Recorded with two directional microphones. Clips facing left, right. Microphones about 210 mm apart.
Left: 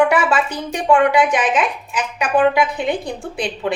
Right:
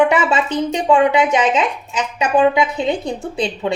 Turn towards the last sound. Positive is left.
turn(degrees=-25)  # may be behind; listen again after turning